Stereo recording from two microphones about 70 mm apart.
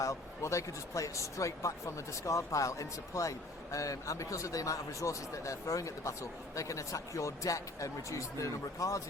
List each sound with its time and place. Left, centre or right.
0.0 s speech: left